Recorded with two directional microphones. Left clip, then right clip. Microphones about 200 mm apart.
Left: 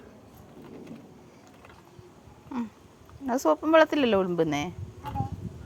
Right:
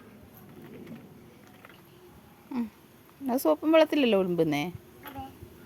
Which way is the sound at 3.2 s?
10° right (ahead or behind).